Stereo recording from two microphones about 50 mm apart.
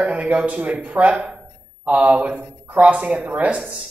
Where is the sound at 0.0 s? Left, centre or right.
Right.